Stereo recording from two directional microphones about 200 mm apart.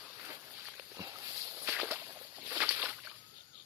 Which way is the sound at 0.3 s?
10° right (ahead or behind).